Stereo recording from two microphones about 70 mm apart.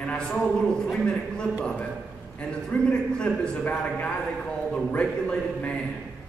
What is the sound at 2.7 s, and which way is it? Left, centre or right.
A man's voice, centre.